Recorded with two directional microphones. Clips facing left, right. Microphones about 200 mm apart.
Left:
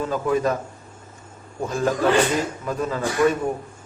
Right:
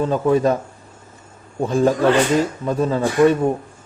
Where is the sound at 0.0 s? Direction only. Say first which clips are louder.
Right 5 dB; 35° right (ahead or behind).